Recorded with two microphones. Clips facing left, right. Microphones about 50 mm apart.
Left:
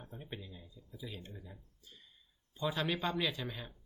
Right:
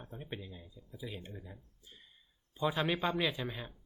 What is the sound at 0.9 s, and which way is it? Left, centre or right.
Speech, centre.